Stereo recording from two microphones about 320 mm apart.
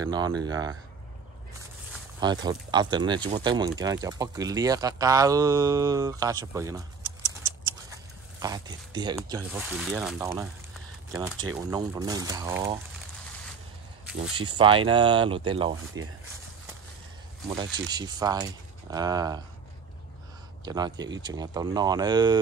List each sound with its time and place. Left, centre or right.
0.0 s speech: centre
2.1 s speech: centre
8.4 s speech: centre
14.3 s speech: centre
17.8 s speech: centre
20.6 s speech: centre